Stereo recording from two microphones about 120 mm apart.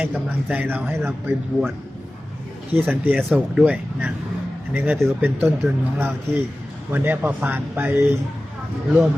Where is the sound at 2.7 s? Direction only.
15° right (ahead or behind).